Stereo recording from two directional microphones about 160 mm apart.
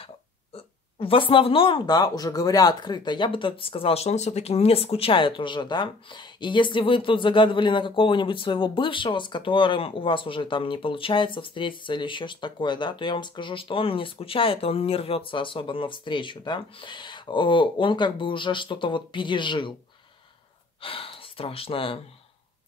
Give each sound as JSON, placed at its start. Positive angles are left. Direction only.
{"t": 0.0, "sound": "speech", "side_deg": 35}
{"t": 20.8, "sound": "speech", "side_deg": 35}